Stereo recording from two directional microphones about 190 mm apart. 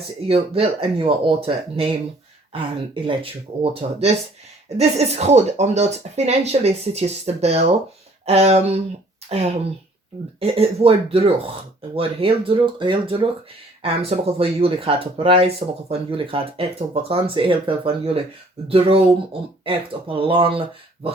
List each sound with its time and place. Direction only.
0.0 s speech: 30° right (ahead or behind)
10.4 s speech: 30° right (ahead or behind)